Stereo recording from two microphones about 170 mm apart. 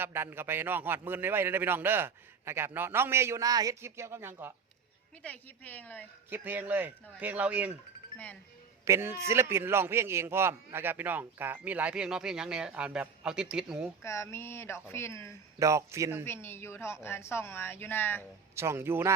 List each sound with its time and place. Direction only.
0.0 s a man's voice: 15° right (ahead or behind)
5.2 s speech: 10° left (ahead or behind)
6.3 s a man's voice: 10° right (ahead or behind)
8.8 s a man's voice: 15° right (ahead or behind)
14.0 s speech: 15° left (ahead or behind)
15.5 s a man's voice: 20° right (ahead or behind)
16.2 s speech: 15° left (ahead or behind)
18.5 s a man's voice: 15° right (ahead or behind)